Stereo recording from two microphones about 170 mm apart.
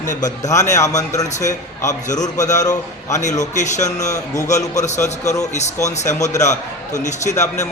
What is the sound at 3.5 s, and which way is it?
Speech, 45° left (ahead or behind).